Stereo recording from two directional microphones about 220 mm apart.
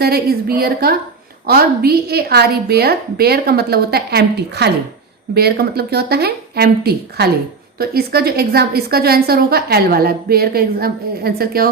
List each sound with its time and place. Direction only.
0.0 s a woman's voice: 45° right (ahead or behind)